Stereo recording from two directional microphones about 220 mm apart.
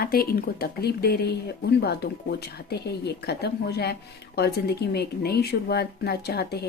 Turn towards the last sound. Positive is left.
turn(degrees=45)  # may be behind; listen again after turning